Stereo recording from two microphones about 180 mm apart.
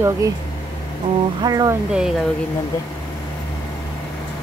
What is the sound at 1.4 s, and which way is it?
Speech, 20° right (ahead or behind).